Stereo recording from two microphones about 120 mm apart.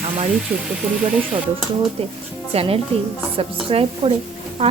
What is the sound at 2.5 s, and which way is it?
Speech, 55° right (ahead or behind).